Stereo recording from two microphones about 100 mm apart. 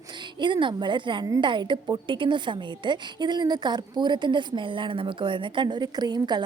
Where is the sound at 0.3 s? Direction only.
50° right (ahead or behind).